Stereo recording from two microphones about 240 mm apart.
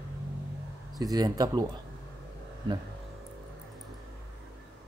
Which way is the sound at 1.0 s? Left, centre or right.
Centre.